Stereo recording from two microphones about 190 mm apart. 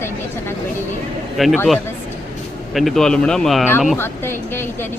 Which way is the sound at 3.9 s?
10° left (ahead or behind).